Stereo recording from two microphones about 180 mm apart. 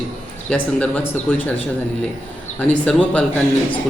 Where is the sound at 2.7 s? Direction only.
10° left (ahead or behind).